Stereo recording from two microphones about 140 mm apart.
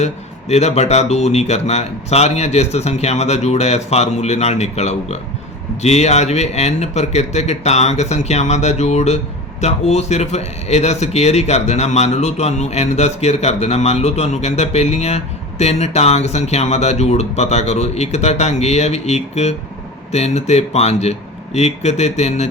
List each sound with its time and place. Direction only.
0.0 s a man's voice: 50° left (ahead or behind)